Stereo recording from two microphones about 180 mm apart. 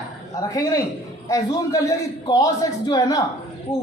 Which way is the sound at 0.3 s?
20° left (ahead or behind).